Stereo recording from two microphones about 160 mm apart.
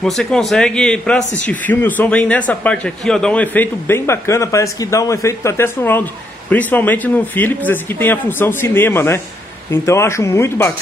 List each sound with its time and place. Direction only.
0.0 s a man's voice: 5° left (ahead or behind)